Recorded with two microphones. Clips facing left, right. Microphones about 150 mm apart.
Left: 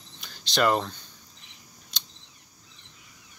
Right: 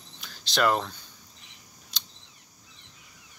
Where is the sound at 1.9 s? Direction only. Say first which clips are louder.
Even; 5° right (ahead or behind).